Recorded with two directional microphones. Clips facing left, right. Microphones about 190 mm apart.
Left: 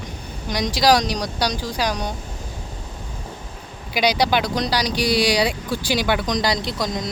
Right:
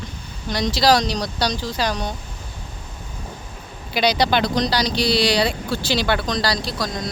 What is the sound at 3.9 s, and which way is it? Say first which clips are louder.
A woman's voice: even; 10° left (ahead or behind).